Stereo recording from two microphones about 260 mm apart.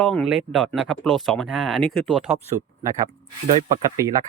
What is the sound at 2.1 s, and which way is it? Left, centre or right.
Speech, right.